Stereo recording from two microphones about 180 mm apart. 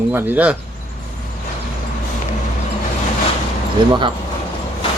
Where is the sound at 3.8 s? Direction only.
25° right (ahead or behind).